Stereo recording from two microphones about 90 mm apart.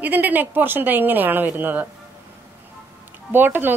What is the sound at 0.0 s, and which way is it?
Speech, 20° right (ahead or behind).